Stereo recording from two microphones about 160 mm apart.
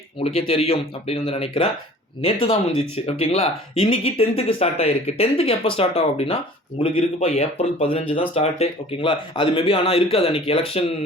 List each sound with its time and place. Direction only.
0.2 s speech: 35° left (ahead or behind)